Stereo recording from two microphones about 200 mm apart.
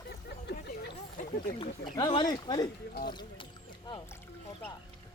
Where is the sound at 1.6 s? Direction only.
25° left (ahead or behind).